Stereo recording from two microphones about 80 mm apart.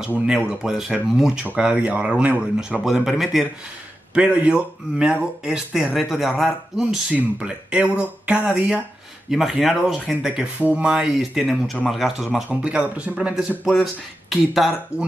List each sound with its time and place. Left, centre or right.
0.3 s speech: centre
2.9 s speech: centre
4.1 s speech: centre
9.3 s speech: centre
10.6 s speech: centre
12.4 s speech: centre